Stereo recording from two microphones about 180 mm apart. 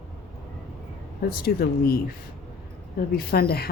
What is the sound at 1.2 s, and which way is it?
Speech, 55° left (ahead or behind).